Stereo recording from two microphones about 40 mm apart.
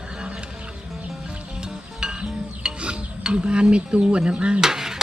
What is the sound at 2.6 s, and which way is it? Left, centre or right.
Stir, right.